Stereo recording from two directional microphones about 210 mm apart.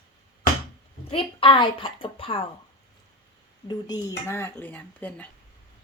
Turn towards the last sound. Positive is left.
turn(degrees=5)  # may be behind; listen again after turning